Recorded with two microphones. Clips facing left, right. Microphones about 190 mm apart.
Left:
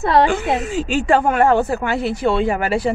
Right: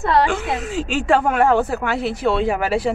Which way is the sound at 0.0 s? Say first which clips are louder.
Left 3 dB; 25° left (ahead or behind).